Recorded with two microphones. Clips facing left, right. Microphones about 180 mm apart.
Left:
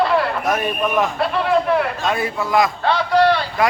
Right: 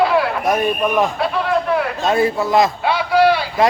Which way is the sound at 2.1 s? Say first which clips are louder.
Right 5 dB; 25° right (ahead or behind).